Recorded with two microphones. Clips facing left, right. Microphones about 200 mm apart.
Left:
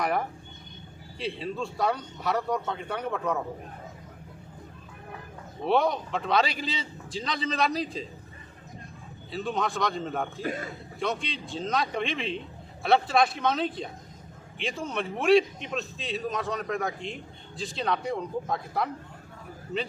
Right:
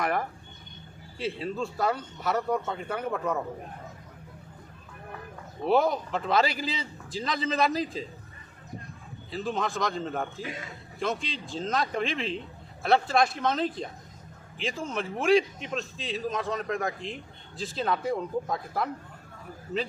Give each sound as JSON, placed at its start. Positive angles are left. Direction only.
{"t": 0.0, "sound": "a man's voice", "side_deg": 0}
{"t": 5.6, "sound": "a man's voice", "side_deg": 0}
{"t": 9.3, "sound": "a man's voice", "side_deg": 0}
{"t": 10.4, "sound": "a man's voice", "side_deg": 50}
{"t": 11.0, "sound": "a man's voice", "side_deg": 0}